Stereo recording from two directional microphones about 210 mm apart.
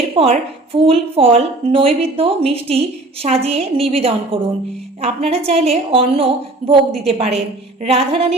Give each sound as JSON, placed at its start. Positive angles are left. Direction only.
{"t": 0.2, "sound": "a woman's voice", "side_deg": -30}